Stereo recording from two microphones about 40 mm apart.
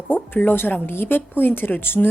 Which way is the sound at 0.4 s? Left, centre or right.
Left.